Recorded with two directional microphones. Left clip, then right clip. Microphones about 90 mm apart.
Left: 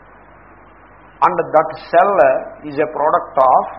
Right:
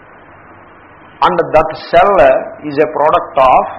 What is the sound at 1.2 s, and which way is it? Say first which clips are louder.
A man's voice: right 3 dB; 25° left (ahead or behind).